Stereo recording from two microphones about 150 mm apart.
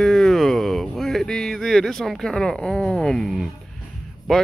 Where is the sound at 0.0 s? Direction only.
Centre (ahead or behind).